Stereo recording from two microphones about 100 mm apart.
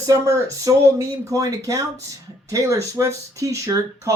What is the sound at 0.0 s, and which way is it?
Speech, 30° right (ahead or behind).